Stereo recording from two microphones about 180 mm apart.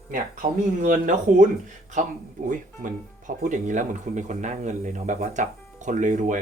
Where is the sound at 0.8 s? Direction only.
45° right (ahead or behind).